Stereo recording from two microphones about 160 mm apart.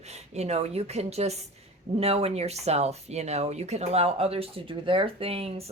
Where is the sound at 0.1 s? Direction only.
40° right (ahead or behind).